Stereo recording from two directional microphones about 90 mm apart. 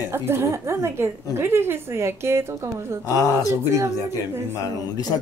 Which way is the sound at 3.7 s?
30° right (ahead or behind).